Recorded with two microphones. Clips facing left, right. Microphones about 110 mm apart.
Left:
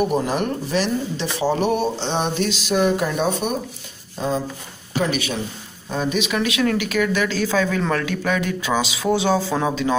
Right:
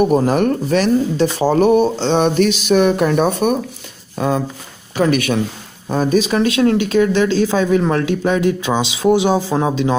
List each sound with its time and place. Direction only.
0.1 s speech: 50° right (ahead or behind)
1.8 s speech: 55° right (ahead or behind)
4.2 s speech: 65° right (ahead or behind)
4.9 s speech: 55° right (ahead or behind)
5.9 s speech: 45° right (ahead or behind); by 9.9 s 20° right (ahead or behind)